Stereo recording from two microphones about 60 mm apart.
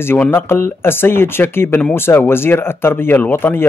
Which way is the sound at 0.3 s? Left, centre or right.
Left.